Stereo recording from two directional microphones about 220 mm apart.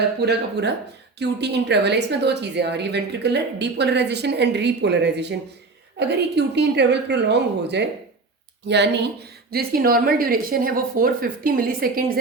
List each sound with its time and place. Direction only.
0.2 s a woman's voice: 50° right (ahead or behind)